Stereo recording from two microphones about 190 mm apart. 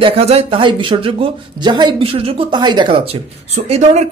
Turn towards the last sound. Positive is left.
turn(degrees=-35)  # may be behind; listen again after turning